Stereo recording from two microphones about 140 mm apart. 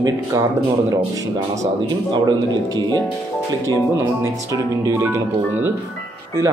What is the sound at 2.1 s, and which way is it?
Speech, 30° right (ahead or behind).